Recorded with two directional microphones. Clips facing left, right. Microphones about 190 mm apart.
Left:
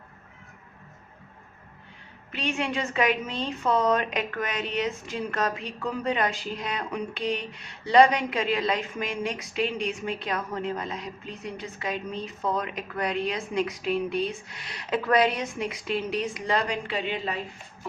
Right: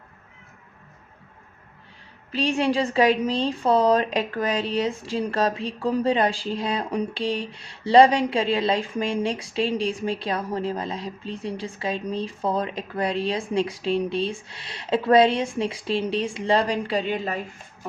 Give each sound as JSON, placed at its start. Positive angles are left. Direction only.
{"t": 2.3, "sound": "a woman's voice", "side_deg": -35}